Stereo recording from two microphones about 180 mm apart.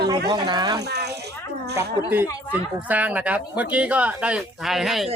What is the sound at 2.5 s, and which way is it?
Speech, 10° right (ahead or behind).